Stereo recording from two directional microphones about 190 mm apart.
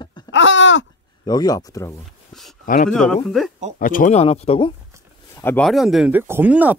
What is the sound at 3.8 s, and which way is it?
Speech, 45° left (ahead or behind).